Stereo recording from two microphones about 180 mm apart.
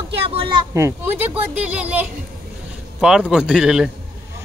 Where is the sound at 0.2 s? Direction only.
30° right (ahead or behind).